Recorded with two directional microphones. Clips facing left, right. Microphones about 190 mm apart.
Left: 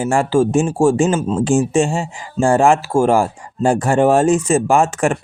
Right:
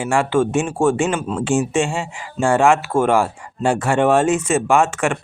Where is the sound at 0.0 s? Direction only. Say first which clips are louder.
Left 2 dB; 35° left (ahead or behind).